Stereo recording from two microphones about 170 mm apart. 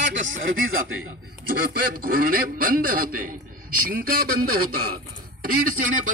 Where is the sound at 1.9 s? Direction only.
55° right (ahead or behind).